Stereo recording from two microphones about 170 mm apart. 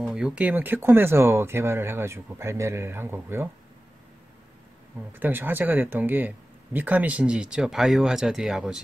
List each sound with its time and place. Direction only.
0.0 s speech: 5° right (ahead or behind)
5.1 s speech: 10° right (ahead or behind)